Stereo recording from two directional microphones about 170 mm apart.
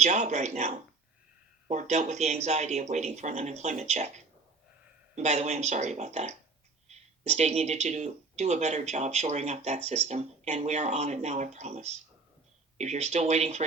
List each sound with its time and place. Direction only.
0.0 s speech: 40° right (ahead or behind)